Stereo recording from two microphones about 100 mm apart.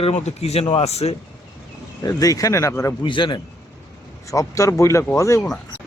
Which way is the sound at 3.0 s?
55° left (ahead or behind).